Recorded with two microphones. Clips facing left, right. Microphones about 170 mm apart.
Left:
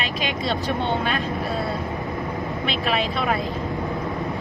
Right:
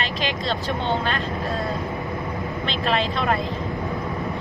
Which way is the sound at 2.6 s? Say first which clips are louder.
Right 1 dB; 5° left (ahead or behind).